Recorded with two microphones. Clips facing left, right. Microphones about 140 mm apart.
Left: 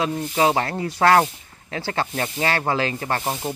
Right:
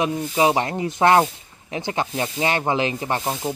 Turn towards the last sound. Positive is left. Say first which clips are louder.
# right 2 dB
turn(degrees=-5)  # may be behind; listen again after turning